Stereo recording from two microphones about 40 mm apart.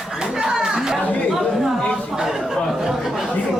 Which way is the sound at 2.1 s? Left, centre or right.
Centre.